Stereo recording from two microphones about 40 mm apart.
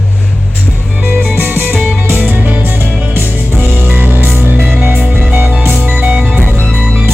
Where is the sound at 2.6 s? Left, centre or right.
Right.